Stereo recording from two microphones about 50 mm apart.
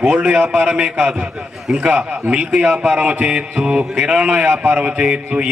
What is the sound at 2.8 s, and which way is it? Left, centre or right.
A man's voice, centre.